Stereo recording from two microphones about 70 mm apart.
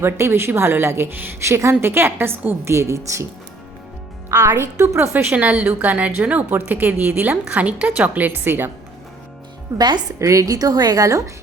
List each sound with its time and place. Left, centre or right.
0.0 s speech: right
2.6 s a woman's voice: right
4.3 s speech: right
5.1 s a woman's voice: right
9.7 s a woman's voice: right
10.2 s a woman's voice: right